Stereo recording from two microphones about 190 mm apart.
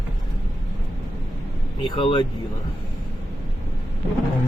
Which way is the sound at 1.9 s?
25° left (ahead or behind).